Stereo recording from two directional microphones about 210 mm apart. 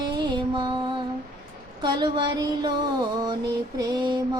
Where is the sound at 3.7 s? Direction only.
20° right (ahead or behind).